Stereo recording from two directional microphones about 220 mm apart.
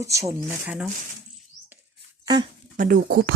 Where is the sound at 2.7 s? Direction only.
35° right (ahead or behind).